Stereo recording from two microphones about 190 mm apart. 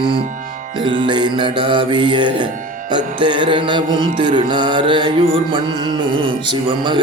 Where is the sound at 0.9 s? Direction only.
25° right (ahead or behind).